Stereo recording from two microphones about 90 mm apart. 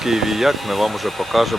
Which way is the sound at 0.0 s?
5° right (ahead or behind).